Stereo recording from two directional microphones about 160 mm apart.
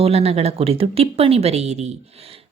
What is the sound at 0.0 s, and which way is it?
Speech, 40° right (ahead or behind).